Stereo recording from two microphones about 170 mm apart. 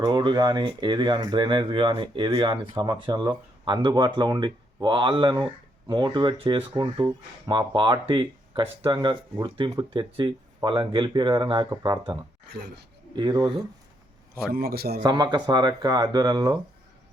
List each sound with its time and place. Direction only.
0.0 s speech: 25° right (ahead or behind)
11.7 s speech: 20° right (ahead or behind)
12.5 s speech: 75° right (ahead or behind)
13.1 s speech: 25° right (ahead or behind)
14.4 s a man's voice: 65° right (ahead or behind)
15.0 s speech: 25° right (ahead or behind)